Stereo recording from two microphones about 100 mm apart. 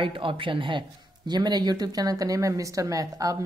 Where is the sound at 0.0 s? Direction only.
60° right (ahead or behind).